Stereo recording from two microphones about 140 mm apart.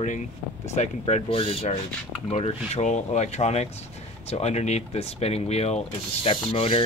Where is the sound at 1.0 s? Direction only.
45° left (ahead or behind).